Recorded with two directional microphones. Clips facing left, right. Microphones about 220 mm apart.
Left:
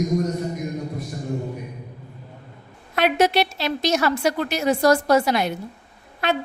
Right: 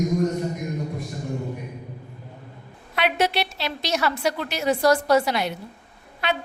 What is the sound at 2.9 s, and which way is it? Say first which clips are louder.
A woman's voice: left 4 dB; 45° left (ahead or behind).